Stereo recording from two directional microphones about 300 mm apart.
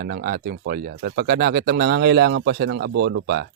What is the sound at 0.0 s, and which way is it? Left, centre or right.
Speech, right.